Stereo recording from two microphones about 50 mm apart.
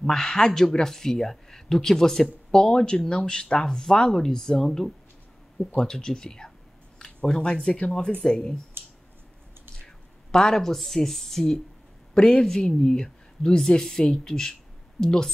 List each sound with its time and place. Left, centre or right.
0.0 s speech: centre
8.8 s clicking: right
10.3 s speech: centre